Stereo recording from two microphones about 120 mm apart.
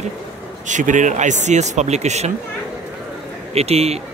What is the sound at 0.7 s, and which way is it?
Speech, 90° right.